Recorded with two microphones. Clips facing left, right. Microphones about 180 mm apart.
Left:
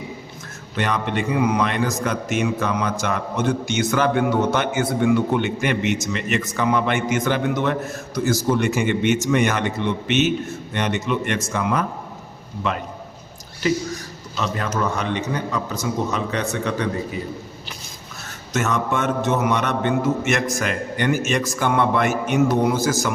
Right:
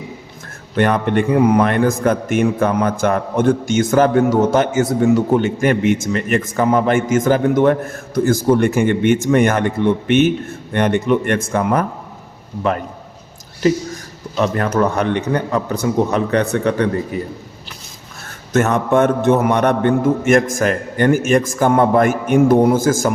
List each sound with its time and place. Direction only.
0.8 s a man's voice: 50° right (ahead or behind)
14.3 s a man's voice: 55° right (ahead or behind)
18.5 s a man's voice: 55° right (ahead or behind)